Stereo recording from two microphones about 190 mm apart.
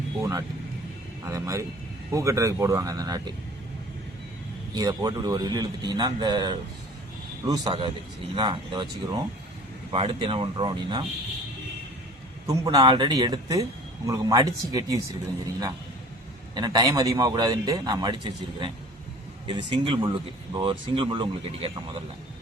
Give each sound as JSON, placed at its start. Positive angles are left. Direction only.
{"t": 0.2, "sound": "speech", "side_deg": -15}
{"t": 4.7, "sound": "a man's voice", "side_deg": -20}
{"t": 12.5, "sound": "a man's voice", "side_deg": -20}
{"t": 16.6, "sound": "a man's voice", "side_deg": -20}